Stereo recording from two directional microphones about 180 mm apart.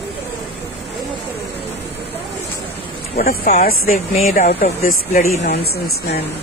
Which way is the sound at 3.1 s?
55° left (ahead or behind).